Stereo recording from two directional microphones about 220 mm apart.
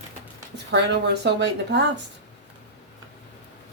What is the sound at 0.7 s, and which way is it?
Speech, 50° right (ahead or behind).